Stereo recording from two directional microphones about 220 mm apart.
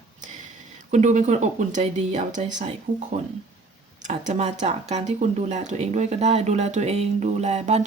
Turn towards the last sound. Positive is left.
turn(degrees=-30)  # may be behind; listen again after turning